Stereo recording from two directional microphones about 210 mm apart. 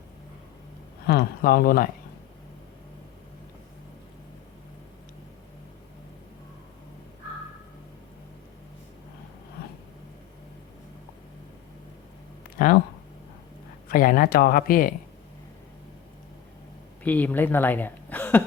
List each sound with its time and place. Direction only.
1.0 s speech: 50° left (ahead or behind)
12.5 s a sound: 40° left (ahead or behind)
13.8 s speech: 40° left (ahead or behind)
17.0 s speech: 10° left (ahead or behind)